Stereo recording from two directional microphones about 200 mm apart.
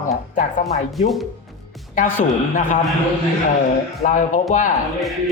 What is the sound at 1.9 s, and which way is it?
Speech, 40° left (ahead or behind).